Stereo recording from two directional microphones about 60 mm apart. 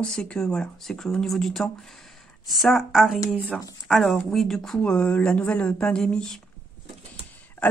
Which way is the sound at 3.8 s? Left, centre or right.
Centre.